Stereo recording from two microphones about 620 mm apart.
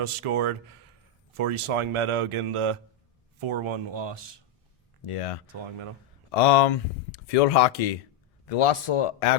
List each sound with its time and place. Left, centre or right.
0.0 s speech: right
5.0 s speech: left